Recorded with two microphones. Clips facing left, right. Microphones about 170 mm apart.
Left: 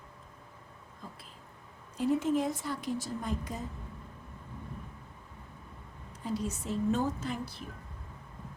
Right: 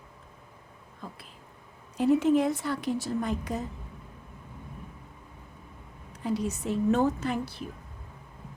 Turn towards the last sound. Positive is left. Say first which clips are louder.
# right 6 dB
turn(degrees=-70)  # may be behind; listen again after turning